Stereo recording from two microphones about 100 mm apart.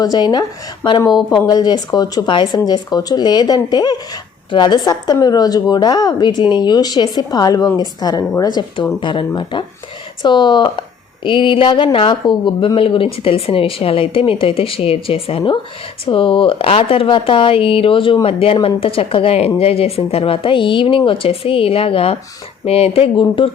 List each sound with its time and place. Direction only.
0.0 s speech: 45° left (ahead or behind)
9.0 s speech: 55° left (ahead or behind); by 22.2 s 75° left (ahead or behind)
22.6 s speech: 85° left; by 23.5 s 60° left (ahead or behind)